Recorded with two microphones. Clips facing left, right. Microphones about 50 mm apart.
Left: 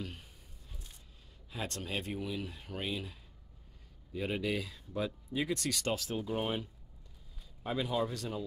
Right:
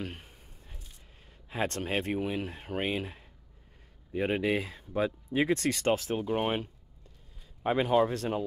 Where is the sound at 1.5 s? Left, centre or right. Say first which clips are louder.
Right 8 dB; right.